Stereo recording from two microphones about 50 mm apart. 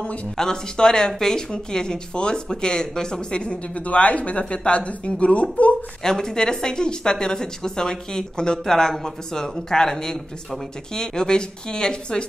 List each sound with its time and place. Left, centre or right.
0.0 s speech: left
0.4 s speech: centre
6.0 s speech: centre